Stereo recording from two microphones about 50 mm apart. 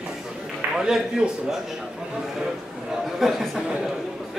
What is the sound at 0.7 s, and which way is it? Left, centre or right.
Speech, centre.